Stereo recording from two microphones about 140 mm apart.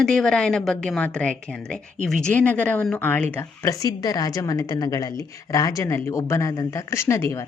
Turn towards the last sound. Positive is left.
turn(degrees=20)  # may be behind; listen again after turning